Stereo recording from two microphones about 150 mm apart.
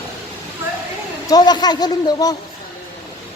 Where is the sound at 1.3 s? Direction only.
25° left (ahead or behind).